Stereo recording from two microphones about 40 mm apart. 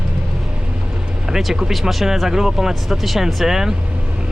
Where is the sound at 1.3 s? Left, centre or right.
Centre.